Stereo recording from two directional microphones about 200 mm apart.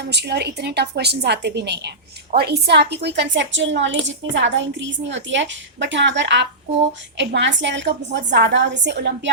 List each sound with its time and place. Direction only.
0.1 s a woman's voice: 55° right (ahead or behind)